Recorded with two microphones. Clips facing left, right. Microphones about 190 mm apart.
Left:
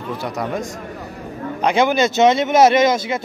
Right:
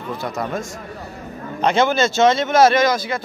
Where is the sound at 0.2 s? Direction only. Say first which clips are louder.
Left 1 dB; 10° left (ahead or behind).